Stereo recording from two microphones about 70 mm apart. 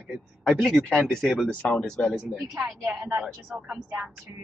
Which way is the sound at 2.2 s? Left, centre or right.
Centre.